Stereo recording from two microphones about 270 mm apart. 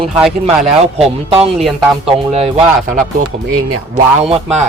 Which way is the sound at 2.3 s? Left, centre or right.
Right.